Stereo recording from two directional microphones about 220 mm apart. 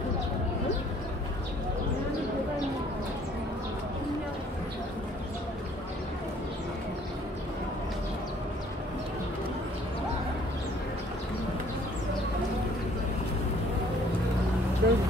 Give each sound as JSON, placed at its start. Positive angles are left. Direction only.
{"t": 14.8, "sound": "vehicle", "side_deg": -45}